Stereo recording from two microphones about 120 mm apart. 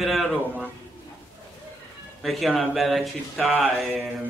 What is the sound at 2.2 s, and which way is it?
A man's voice, centre (ahead or behind).